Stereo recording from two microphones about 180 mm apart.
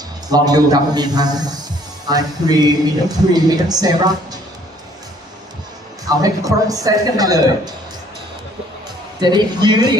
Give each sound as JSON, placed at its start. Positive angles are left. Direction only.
{"t": 0.3, "sound": "speech", "side_deg": -20}
{"t": 6.1, "sound": "speech", "side_deg": -20}
{"t": 9.2, "sound": "speech", "side_deg": -25}